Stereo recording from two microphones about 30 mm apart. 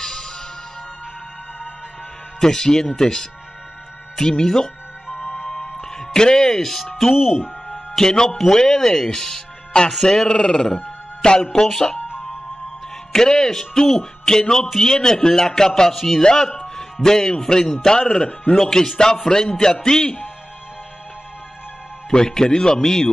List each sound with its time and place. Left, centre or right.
0.0 s music: centre
2.4 s speech: centre
5.0 s music: centre
5.8 s music: left
7.2 s speech: centre
8.0 s speech: left
10.3 s speech: left
11.2 s speech: left
13.1 s speech: centre
16.2 s a man's voice: left
18.1 s speech: left
18.7 s speech: left
22.1 s speech: left